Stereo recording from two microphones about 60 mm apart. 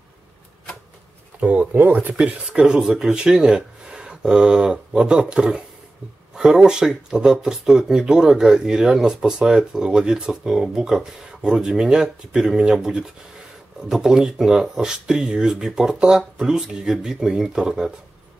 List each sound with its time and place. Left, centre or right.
1.4 s speech: right